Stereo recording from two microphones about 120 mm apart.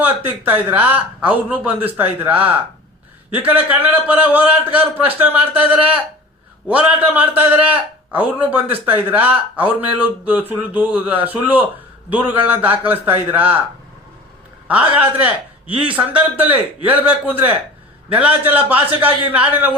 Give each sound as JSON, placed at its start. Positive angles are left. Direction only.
{"t": 0.0, "sound": "a man's voice", "side_deg": -15}
{"t": 6.7, "sound": "a man's voice", "side_deg": -15}
{"t": 14.7, "sound": "a man's voice", "side_deg": -10}